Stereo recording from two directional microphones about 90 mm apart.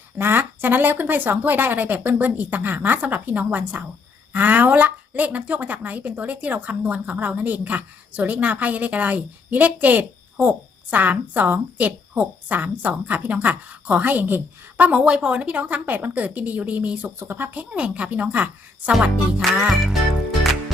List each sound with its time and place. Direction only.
0.2 s a woman's voice: 25° right (ahead or behind)
18.9 s music: 10° right (ahead or behind)